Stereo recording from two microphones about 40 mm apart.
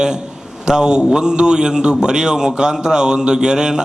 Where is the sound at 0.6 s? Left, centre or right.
Centre.